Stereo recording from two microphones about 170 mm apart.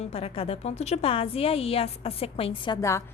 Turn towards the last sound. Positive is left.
turn(degrees=15)  # may be behind; listen again after turning